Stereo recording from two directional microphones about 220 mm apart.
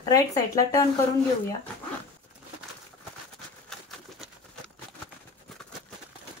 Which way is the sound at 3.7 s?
Centre (ahead or behind).